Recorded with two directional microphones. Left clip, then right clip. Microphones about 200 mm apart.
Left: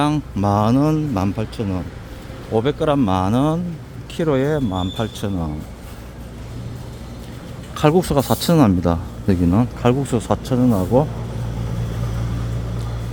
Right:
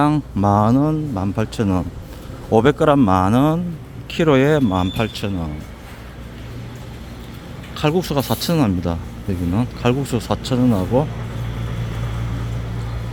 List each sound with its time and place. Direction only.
0.0 s speech: 10° right (ahead or behind)
1.4 s speech: 20° right (ahead or behind); by 3.6 s 5° right (ahead or behind)
4.1 s speech: 15° right (ahead or behind)
7.7 s speech: 15° left (ahead or behind)